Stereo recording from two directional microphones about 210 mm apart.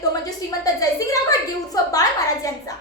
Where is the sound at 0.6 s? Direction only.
15° left (ahead or behind).